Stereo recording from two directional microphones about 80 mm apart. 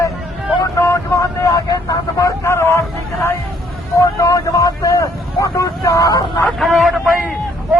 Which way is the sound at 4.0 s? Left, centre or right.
Left.